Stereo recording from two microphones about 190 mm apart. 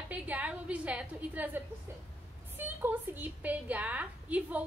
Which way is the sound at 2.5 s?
10° right (ahead or behind).